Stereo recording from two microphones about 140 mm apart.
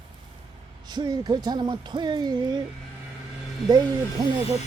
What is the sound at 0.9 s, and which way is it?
Speech, 30° right (ahead or behind).